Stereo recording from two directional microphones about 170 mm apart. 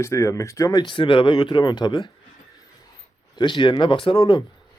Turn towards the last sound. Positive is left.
turn(degrees=35)  # may be behind; listen again after turning